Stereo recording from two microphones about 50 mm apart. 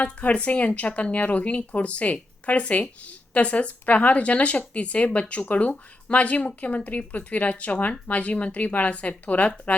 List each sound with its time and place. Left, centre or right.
0.0 s speech: left